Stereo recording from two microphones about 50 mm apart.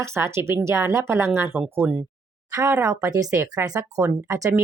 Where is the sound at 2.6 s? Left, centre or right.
Right.